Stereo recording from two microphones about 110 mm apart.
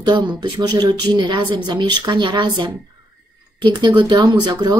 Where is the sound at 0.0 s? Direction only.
40° right (ahead or behind).